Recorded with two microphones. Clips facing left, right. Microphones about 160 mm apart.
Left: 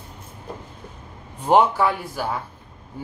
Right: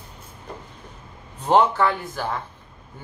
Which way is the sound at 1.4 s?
10° left (ahead or behind).